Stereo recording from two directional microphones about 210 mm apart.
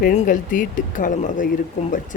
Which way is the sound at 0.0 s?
40° left (ahead or behind).